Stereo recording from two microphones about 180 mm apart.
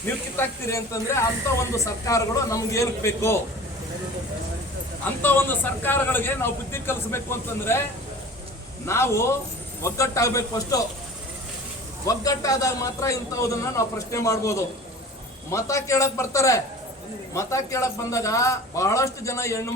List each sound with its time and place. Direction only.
0.0 s a man's voice: 15° left (ahead or behind)
5.2 s a man's voice: 10° left (ahead or behind)
8.9 s a man's voice: 15° left (ahead or behind)
12.0 s a man's voice: 20° left (ahead or behind)